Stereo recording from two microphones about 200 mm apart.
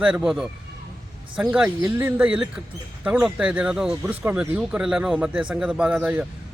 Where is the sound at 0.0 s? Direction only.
5° right (ahead or behind).